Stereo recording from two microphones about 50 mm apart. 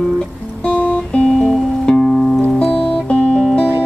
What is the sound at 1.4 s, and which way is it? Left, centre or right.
Music, centre.